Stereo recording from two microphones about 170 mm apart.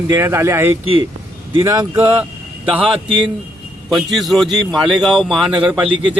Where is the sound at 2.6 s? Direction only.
5° right (ahead or behind).